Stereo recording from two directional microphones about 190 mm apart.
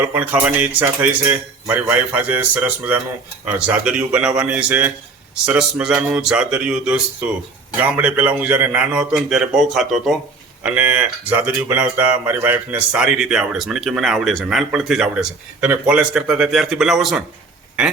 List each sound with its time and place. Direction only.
0.1 s speech: 10° right (ahead or behind)